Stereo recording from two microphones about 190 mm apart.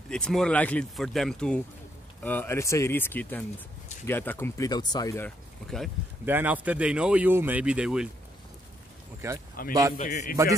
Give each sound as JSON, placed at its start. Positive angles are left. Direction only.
{"t": 0.1, "sound": "speech", "side_deg": 5}
{"t": 6.2, "sound": "speech", "side_deg": -10}
{"t": 9.2, "sound": "speech", "side_deg": -15}
{"t": 9.9, "sound": "a man's voice", "side_deg": 40}